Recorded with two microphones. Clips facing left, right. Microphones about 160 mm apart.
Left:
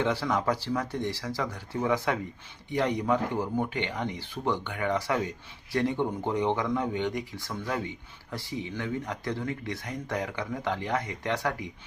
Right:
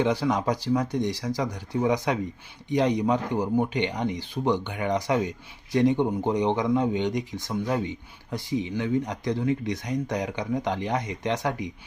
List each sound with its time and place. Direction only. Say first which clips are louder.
0.0 s speech: right 3 dB; 15° right (ahead or behind)